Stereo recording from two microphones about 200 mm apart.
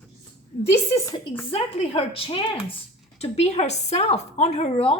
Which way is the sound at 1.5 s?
30° left (ahead or behind).